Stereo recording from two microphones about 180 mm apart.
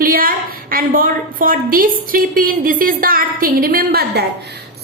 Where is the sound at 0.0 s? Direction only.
50° right (ahead or behind).